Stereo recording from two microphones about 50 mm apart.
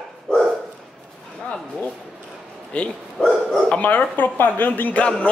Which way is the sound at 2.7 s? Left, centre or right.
Left.